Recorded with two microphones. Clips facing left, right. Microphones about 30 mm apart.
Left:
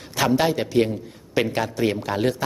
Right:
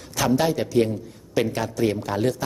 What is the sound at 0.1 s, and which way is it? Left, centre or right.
A man's voice, left.